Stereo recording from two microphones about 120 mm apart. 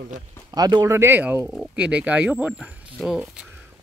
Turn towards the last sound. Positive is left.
turn(degrees=-5)  # may be behind; listen again after turning